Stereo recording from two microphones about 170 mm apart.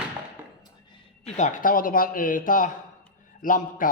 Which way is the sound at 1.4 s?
50° left (ahead or behind).